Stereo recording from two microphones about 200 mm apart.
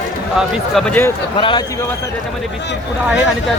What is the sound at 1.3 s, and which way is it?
Speech, 25° left (ahead or behind).